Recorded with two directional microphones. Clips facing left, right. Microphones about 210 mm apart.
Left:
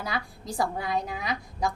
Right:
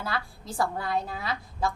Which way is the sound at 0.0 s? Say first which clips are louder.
Even; 15° left (ahead or behind).